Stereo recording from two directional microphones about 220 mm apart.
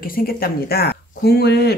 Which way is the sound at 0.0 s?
40° left (ahead or behind).